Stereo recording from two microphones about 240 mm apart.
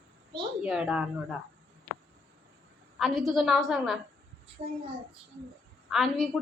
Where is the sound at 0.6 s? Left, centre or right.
Centre.